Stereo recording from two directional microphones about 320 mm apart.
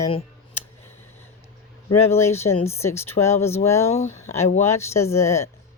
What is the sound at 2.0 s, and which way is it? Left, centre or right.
Speech, centre.